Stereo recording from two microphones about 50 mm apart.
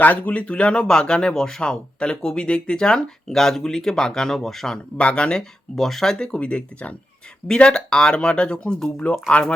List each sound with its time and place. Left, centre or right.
0.0 s speech: left; by 4.8 s centre
4.9 s speech: left
7.4 s speech: centre